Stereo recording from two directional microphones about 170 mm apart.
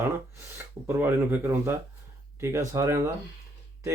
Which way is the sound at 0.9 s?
10° right (ahead or behind).